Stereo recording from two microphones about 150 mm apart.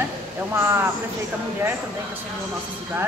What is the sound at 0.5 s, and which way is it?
Speech, 15° right (ahead or behind).